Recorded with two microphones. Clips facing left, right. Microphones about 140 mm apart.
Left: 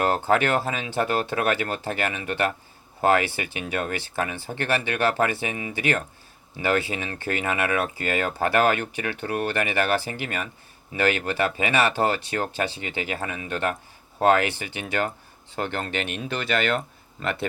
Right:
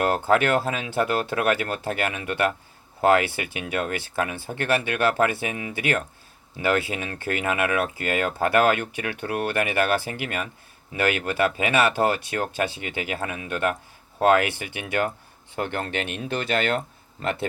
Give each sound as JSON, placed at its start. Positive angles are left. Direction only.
{"t": 0.1, "sound": "speech", "side_deg": -55}